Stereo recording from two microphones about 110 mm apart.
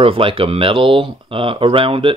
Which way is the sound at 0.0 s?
55° right (ahead or behind).